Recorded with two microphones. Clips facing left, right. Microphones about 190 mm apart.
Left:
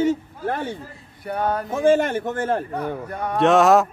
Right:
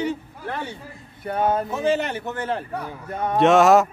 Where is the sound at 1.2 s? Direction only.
25° right (ahead or behind).